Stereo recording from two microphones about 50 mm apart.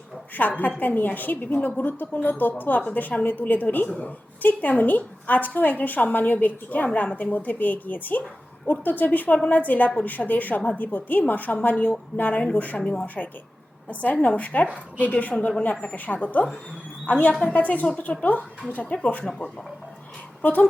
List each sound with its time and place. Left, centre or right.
0.3 s a woman's voice: left
12.8 s a woman's voice: centre
14.0 s a woman's voice: left
20.4 s a woman's voice: left